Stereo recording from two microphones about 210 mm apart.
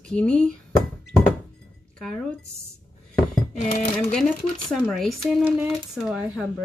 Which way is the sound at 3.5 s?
35° left (ahead or behind).